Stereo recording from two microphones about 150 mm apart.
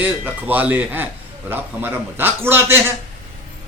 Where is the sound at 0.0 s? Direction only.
10° right (ahead or behind).